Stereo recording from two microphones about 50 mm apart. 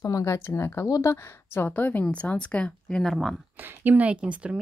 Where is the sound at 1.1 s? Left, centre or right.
Left; by 3.0 s centre.